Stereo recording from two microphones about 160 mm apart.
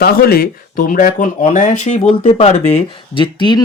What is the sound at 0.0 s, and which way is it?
Speech, 70° left (ahead or behind).